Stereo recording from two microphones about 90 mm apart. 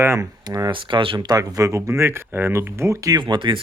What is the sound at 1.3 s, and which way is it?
Speech, 40° right (ahead or behind).